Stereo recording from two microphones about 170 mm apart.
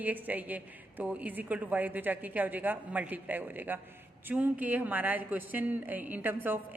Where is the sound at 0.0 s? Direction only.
10° right (ahead or behind).